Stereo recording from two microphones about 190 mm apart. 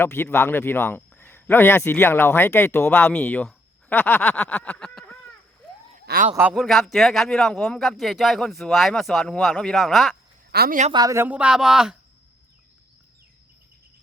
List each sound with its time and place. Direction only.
0.0 s speech: 10° left (ahead or behind)
6.1 s a man's voice: 60° right (ahead or behind)
6.5 s speech: centre (ahead or behind)
10.5 s speech: 55° right (ahead or behind)
10.9 s speech: 15° right (ahead or behind)